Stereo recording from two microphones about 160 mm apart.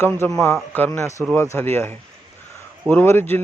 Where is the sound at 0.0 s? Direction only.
15° left (ahead or behind).